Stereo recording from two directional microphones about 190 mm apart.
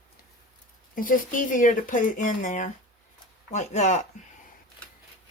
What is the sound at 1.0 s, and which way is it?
Speech, 45° left (ahead or behind).